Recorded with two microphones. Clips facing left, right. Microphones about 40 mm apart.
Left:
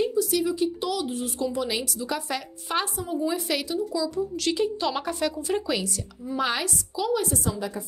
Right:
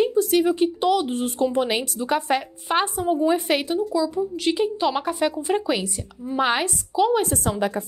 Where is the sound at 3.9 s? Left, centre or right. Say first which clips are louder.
Right 4 dB; right.